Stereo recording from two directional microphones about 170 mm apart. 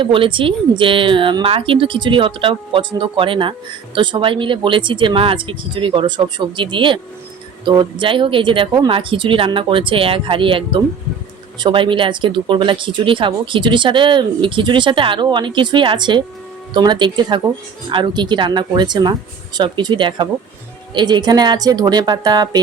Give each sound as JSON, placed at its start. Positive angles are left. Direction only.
{"t": 0.0, "sound": "a woman's voice", "side_deg": -30}